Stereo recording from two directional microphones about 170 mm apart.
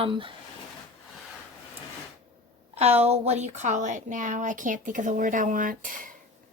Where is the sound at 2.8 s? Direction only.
40° right (ahead or behind).